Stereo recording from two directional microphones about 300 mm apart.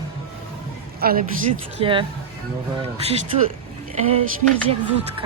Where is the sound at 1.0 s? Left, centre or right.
Right.